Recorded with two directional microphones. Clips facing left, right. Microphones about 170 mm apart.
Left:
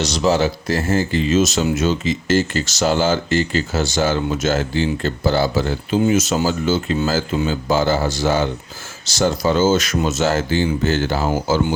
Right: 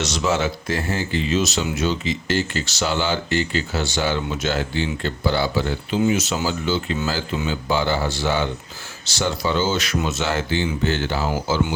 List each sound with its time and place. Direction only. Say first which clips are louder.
0.0 s speech: left 4 dB; 35° left (ahead or behind)